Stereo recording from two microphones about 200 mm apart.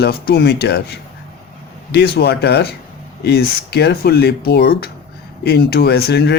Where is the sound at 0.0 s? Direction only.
55° left (ahead or behind).